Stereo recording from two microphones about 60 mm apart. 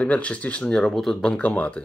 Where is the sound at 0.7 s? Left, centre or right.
Centre.